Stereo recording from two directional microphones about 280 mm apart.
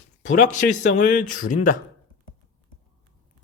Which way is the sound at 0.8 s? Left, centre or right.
Left.